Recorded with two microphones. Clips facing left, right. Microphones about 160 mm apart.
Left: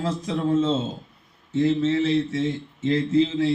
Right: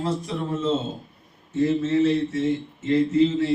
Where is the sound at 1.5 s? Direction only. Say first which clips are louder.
Even; 90° left.